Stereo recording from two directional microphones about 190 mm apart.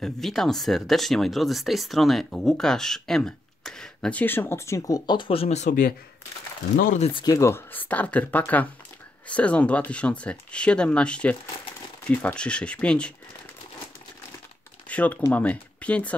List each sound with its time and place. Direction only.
0.0 s speech: centre (ahead or behind); by 7.1 s 40° left (ahead or behind)
7.2 s speech: 15° left (ahead or behind)
14.9 s speech: 5° left (ahead or behind)